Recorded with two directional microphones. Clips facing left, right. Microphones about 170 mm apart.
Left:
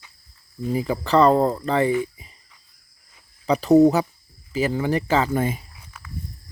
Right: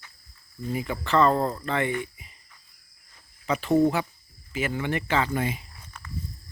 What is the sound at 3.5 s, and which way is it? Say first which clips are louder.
Speech: left 7 dB; 40° left (ahead or behind).